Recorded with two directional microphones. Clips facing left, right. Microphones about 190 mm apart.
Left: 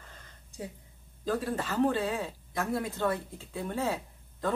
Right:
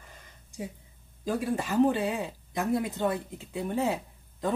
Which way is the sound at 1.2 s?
15° right (ahead or behind).